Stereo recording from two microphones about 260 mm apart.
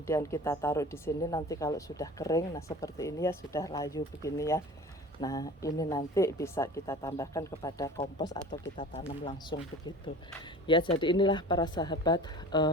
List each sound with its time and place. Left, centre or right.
0.1 s speech: centre